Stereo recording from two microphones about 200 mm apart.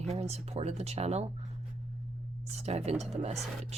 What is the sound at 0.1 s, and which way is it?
Speech, 30° right (ahead or behind).